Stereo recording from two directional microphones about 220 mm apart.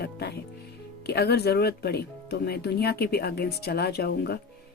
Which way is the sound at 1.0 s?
45° left (ahead or behind).